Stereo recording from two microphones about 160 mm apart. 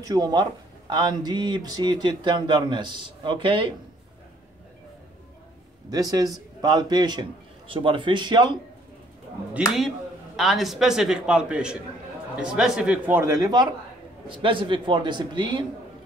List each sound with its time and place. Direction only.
0.0 s speech: 25° right (ahead or behind)
5.9 s speech: 25° right (ahead or behind)
9.8 s a man's voice: centre (ahead or behind); by 15.6 s 30° right (ahead or behind)